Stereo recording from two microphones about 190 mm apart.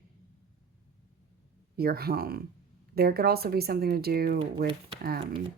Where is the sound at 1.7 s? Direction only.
55° right (ahead or behind).